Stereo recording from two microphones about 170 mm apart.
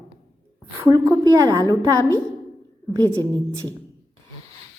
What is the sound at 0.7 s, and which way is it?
A woman's voice, 15° right (ahead or behind).